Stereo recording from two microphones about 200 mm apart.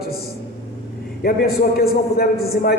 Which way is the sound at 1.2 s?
50° left (ahead or behind).